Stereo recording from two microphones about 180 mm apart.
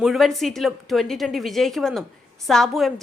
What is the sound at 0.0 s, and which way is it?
A woman's voice, centre (ahead or behind).